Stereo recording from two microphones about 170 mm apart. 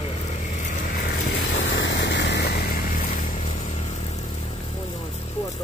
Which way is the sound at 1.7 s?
90° left.